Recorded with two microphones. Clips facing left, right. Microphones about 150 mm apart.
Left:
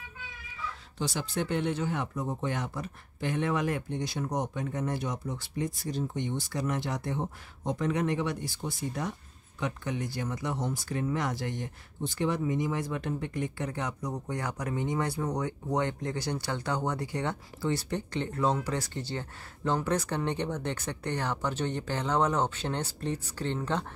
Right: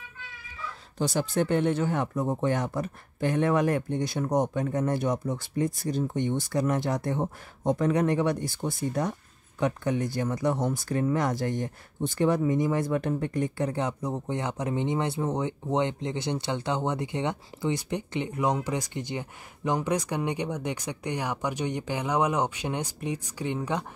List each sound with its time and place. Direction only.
0.9 s speech: 45° right (ahead or behind); by 23.9 s 10° right (ahead or behind)